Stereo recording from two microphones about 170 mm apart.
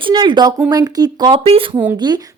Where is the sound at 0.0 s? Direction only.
30° right (ahead or behind).